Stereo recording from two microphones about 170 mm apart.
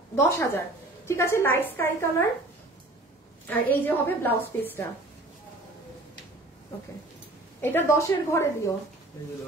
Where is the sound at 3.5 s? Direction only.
10° left (ahead or behind).